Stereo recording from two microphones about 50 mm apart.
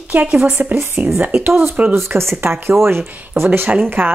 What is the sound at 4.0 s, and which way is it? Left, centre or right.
Speech, centre.